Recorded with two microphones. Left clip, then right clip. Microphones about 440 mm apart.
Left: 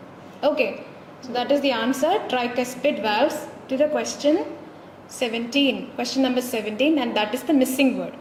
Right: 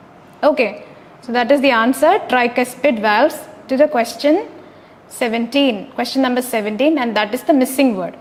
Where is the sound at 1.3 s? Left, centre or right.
Right.